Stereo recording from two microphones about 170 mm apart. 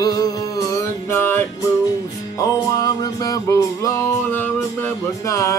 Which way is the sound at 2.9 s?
20° left (ahead or behind).